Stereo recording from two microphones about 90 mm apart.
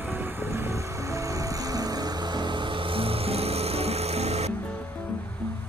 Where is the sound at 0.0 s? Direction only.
25° right (ahead or behind); by 3.8 s 90° right.